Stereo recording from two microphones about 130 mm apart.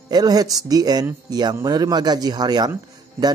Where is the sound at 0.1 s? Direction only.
30° right (ahead or behind).